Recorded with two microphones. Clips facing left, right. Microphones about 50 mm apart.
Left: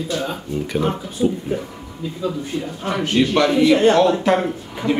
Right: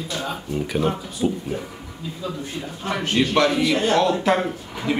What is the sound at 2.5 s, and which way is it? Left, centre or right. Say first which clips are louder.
A man's voice: left 4 dB; centre.